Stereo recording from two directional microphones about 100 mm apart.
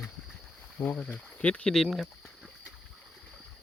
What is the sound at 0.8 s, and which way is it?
Speech, 15° left (ahead or behind).